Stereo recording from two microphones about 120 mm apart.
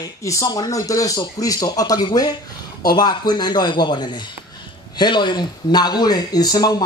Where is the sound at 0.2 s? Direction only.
25° left (ahead or behind).